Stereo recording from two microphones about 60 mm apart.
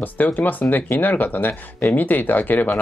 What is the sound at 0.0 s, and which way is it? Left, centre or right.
Speech, left.